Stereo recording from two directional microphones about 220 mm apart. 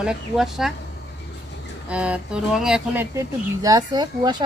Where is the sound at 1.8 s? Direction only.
5° right (ahead or behind).